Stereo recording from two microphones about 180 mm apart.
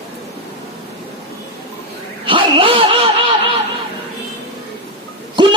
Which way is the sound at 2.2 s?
30° right (ahead or behind).